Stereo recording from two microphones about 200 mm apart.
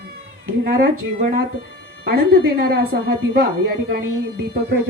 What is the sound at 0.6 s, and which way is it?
Speech, 45° right (ahead or behind).